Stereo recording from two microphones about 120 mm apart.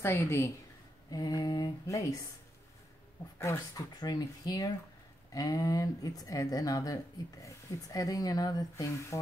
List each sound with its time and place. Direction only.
0.0 s speech: 25° left (ahead or behind)
3.3 s speech: 25° left (ahead or behind)